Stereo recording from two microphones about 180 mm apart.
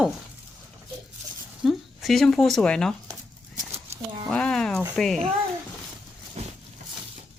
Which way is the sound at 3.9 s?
30° right (ahead or behind).